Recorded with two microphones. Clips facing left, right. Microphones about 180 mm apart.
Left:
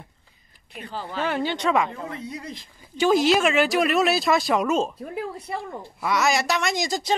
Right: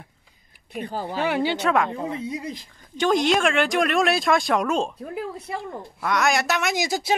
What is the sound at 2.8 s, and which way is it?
A woman's voice, 5° left (ahead or behind).